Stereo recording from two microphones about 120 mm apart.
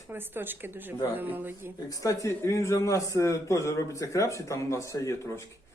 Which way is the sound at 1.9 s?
30° left (ahead or behind).